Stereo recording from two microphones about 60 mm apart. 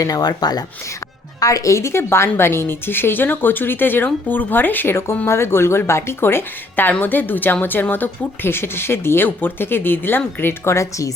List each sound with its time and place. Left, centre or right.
0.0 s speech: left
1.4 s speech: left